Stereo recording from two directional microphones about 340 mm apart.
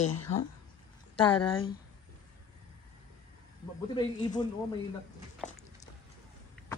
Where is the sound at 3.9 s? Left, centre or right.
Centre.